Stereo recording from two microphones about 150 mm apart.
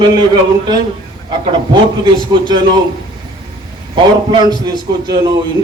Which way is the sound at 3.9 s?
30° right (ahead or behind).